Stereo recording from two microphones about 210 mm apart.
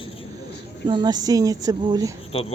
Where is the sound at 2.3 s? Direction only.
25° left (ahead or behind).